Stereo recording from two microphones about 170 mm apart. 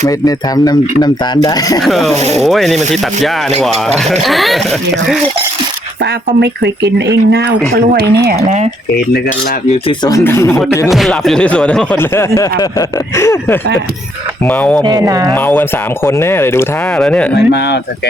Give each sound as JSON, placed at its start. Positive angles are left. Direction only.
{"t": 0.0, "sound": "speech", "side_deg": 20}
{"t": 1.8, "sound": "rub", "side_deg": 0}
{"t": 4.2, "sound": "rub", "side_deg": 0}
{"t": 6.4, "sound": "speech", "side_deg": -85}
{"t": 8.4, "sound": "speech", "side_deg": -40}
{"t": 10.0, "sound": "speech", "side_deg": 20}
{"t": 10.8, "sound": "speech", "side_deg": 0}
{"t": 14.8, "sound": "speech", "side_deg": -20}
{"t": 16.0, "sound": "speech", "side_deg": 15}
{"t": 17.0, "sound": "rub", "side_deg": 5}
{"t": 17.3, "sound": "speech", "side_deg": 80}